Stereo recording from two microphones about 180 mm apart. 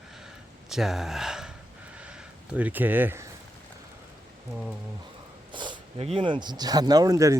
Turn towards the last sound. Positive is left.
turn(degrees=-20)  # may be behind; listen again after turning